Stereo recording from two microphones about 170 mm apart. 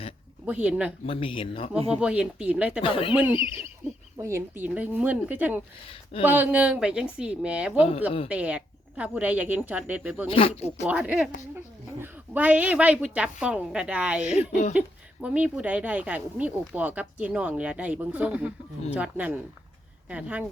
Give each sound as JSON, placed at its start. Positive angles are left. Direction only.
{"t": 0.4, "sound": "a woman's voice", "side_deg": -5}
{"t": 1.0, "sound": "speech", "side_deg": 30}
{"t": 1.9, "sound": "a woman's voice", "side_deg": -5}
{"t": 2.8, "sound": "speech", "side_deg": 30}
{"t": 3.8, "sound": "a sound", "side_deg": -45}
{"t": 4.2, "sound": "a woman's voice", "side_deg": -15}
{"t": 5.9, "sound": "speech", "side_deg": 35}
{"t": 6.2, "sound": "a woman's voice", "side_deg": -10}
{"t": 10.2, "sound": "speech", "side_deg": 35}
{"t": 10.8, "sound": "a woman's voice", "side_deg": -5}